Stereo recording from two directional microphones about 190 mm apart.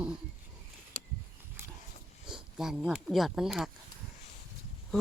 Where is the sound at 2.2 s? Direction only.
5° right (ahead or behind).